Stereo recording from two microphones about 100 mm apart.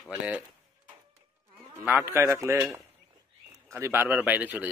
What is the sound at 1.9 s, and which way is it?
Speech, 20° right (ahead or behind).